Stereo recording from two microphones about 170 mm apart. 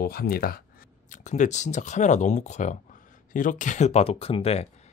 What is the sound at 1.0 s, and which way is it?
Speech, 45° left (ahead or behind).